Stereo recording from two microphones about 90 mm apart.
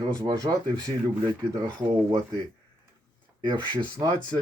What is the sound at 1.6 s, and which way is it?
Speech, 40° right (ahead or behind).